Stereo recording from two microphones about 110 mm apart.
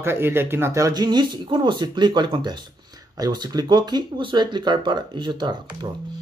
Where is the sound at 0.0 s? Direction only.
20° right (ahead or behind); by 5.6 s 40° right (ahead or behind).